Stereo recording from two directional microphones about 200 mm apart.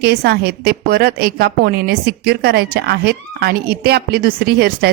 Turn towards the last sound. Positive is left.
turn(degrees=-50)  # may be behind; listen again after turning